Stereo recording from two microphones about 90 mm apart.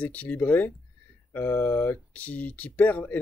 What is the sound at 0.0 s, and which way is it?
Speech, 15° left (ahead or behind).